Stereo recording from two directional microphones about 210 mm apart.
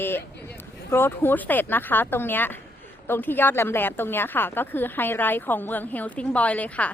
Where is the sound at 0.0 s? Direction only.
10° left (ahead or behind).